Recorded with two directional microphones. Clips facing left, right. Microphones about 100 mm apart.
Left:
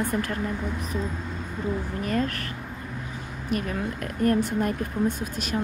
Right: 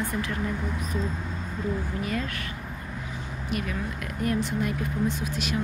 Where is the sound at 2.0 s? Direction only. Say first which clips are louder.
Left 8 dB; 45° left (ahead or behind).